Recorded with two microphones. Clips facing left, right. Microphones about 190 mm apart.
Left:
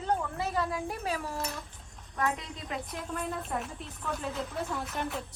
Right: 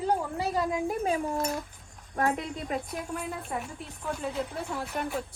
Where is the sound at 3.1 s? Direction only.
10° right (ahead or behind).